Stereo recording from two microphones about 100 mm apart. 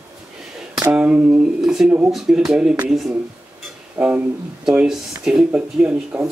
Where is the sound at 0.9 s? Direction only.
15° right (ahead or behind).